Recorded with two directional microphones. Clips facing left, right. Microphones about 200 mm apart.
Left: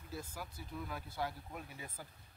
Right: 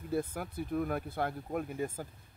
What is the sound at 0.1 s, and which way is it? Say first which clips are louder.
Speech: right 12 dB; 55° right (ahead or behind).